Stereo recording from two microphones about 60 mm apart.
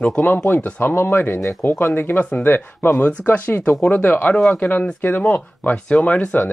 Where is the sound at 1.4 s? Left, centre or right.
Left.